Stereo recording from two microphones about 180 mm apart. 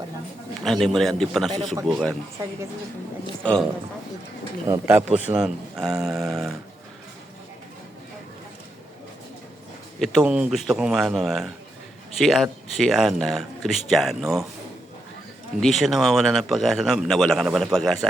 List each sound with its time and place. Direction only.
0.6 s a man's voice: centre (ahead or behind)
3.4 s a man's voice: 5° left (ahead or behind)
4.6 s a man's voice: 15° right (ahead or behind)
10.0 s a man's voice: 5° right (ahead or behind)
15.6 s a man's voice: centre (ahead or behind)